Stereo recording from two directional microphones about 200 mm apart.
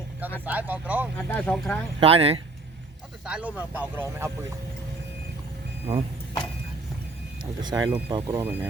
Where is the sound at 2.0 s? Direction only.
30° right (ahead or behind).